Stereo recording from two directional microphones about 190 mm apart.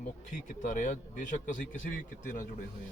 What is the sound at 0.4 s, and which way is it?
A man's voice, 40° left (ahead or behind).